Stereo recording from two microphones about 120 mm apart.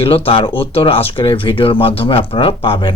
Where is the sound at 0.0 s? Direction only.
50° left (ahead or behind).